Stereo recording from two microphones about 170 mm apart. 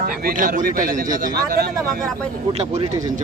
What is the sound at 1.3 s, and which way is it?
Speech, 65° right (ahead or behind).